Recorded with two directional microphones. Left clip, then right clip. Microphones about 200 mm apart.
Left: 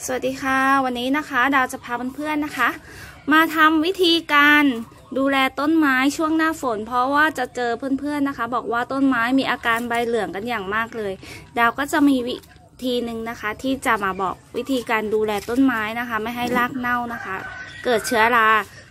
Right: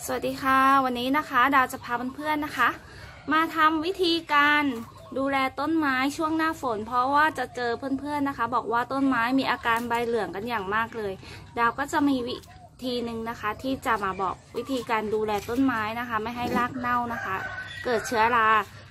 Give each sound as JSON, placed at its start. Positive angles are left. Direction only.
{"t": 0.0, "sound": "a woman's voice", "side_deg": 15}
{"t": 3.3, "sound": "speech", "side_deg": 40}